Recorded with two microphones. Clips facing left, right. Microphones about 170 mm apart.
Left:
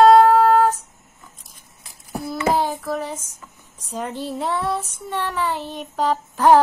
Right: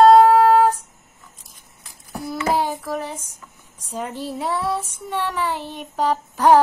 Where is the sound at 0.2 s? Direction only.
10° right (ahead or behind).